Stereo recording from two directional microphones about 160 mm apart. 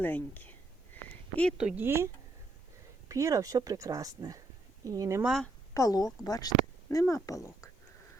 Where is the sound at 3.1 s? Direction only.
20° right (ahead or behind).